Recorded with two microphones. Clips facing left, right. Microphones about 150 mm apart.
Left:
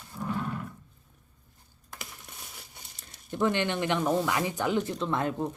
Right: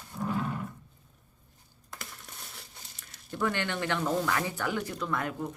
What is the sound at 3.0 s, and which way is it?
Speech, 25° left (ahead or behind).